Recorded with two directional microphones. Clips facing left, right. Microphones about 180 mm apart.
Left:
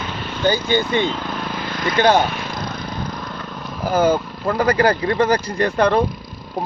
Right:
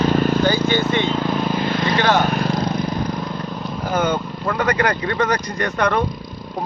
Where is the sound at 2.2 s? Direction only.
40° right (ahead or behind).